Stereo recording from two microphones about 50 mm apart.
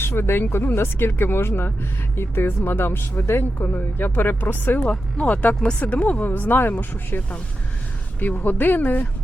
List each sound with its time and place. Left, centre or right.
0.0 s speech: left
4.9 s speech: left